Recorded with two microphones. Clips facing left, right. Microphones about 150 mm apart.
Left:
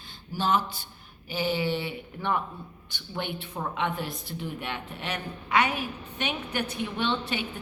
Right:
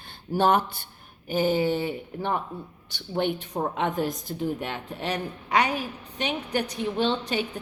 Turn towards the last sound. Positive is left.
turn(degrees=-40)  # may be behind; listen again after turning